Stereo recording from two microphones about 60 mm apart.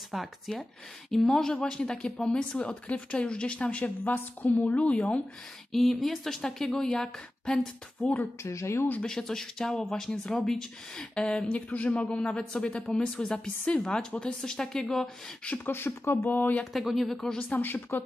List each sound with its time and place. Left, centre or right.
0.1 s a woman's voice: centre
5.7 s speech: centre
8.4 s speech: left
9.0 s speech: centre
15.6 s speech: left
16.7 s speech: centre
17.4 s speech: left